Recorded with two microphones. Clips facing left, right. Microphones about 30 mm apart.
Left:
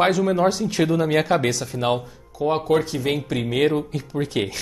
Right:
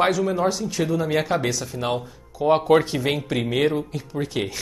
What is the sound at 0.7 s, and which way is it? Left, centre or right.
Speech, left.